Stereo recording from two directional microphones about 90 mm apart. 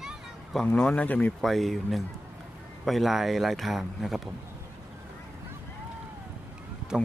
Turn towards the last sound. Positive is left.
turn(degrees=-10)  # may be behind; listen again after turning